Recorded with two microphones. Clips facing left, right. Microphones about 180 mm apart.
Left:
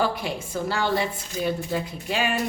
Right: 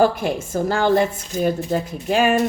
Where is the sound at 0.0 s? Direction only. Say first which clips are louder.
Right 8 dB; 50° right (ahead or behind).